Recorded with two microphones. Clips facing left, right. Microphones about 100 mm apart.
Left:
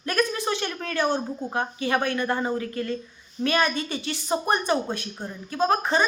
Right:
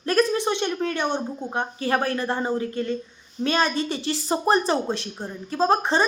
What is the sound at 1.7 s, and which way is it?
A woman's voice, 35° right (ahead or behind).